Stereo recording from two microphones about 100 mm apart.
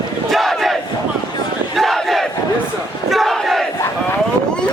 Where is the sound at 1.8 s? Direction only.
Centre (ahead or behind).